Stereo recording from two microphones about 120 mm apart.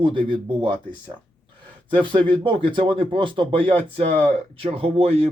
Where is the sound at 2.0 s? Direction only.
45° right (ahead or behind).